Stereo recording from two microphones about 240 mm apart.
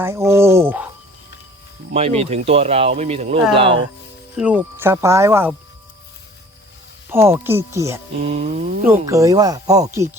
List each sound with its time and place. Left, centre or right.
0.3 s speech: centre
1.9 s speech: right
4.4 s speech: centre
7.1 s speech: centre
8.3 s speech: right
8.8 s speech: centre